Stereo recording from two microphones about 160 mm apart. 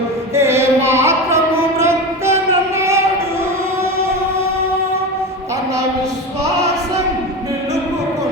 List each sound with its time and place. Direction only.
0.3 s music: 15° right (ahead or behind)
1.8 s child singing: 15° right (ahead or behind)